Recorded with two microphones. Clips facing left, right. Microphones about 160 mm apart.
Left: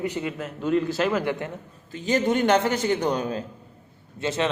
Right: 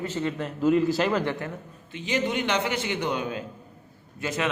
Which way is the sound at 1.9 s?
40° left (ahead or behind).